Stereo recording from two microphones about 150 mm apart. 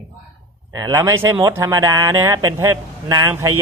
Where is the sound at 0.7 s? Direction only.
20° right (ahead or behind).